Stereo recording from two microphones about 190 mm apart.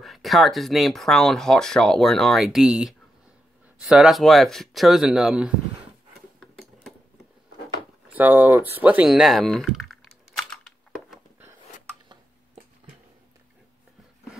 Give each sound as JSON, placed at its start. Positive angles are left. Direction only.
{"t": 0.0, "sound": "speech", "side_deg": 0}
{"t": 8.1, "sound": "speech", "side_deg": -10}
{"t": 8.7, "sound": "typing", "side_deg": -10}
{"t": 11.1, "sound": "a sound", "side_deg": -10}